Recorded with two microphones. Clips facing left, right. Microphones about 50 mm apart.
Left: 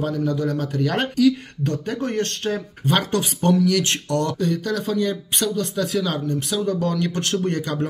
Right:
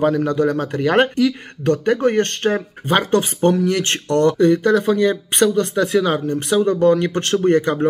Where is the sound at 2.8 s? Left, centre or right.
Right.